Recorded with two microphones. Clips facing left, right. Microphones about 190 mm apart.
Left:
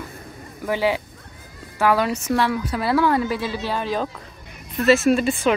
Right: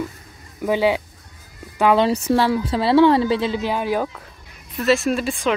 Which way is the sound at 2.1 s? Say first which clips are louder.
Right 3 dB; 30° right (ahead or behind).